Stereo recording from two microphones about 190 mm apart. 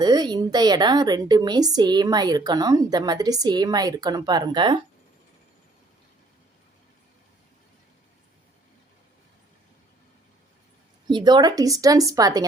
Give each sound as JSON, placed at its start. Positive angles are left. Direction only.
{"t": 0.0, "sound": "a woman's voice", "side_deg": -20}
{"t": 11.1, "sound": "a woman's voice", "side_deg": -20}